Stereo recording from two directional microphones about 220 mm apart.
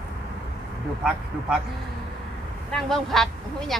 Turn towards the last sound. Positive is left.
turn(degrees=0)  # may be behind; listen again after turning